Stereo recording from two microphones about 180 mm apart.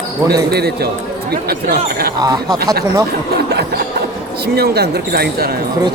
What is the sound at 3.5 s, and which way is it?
Speech, 60° right (ahead or behind).